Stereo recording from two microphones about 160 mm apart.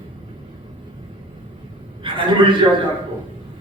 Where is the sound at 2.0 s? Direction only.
30° right (ahead or behind).